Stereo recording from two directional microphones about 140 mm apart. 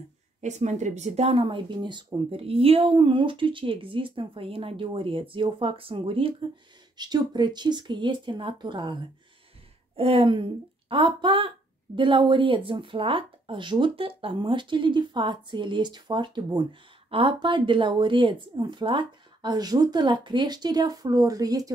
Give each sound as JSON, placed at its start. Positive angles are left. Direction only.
{"t": 0.4, "sound": "a woman's voice", "side_deg": -55}